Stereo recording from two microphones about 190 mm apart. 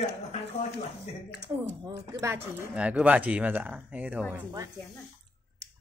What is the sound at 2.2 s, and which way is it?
Speech, 15° right (ahead or behind).